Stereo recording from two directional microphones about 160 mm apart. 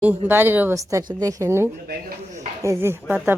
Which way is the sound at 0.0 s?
10° right (ahead or behind).